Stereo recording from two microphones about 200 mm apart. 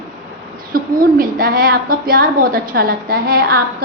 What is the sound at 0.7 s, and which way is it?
A woman's voice, 45° right (ahead or behind).